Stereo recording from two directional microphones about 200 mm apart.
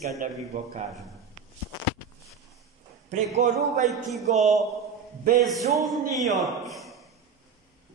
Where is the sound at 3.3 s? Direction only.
35° right (ahead or behind).